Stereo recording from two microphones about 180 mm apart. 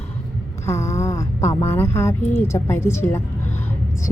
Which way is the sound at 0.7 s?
15° left (ahead or behind).